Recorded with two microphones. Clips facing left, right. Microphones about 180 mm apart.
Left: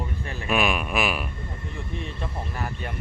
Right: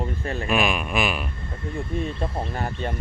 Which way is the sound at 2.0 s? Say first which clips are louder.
Right 6 dB; 35° right (ahead or behind).